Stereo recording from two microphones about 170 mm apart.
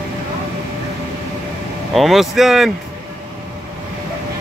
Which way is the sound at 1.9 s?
Centre (ahead or behind).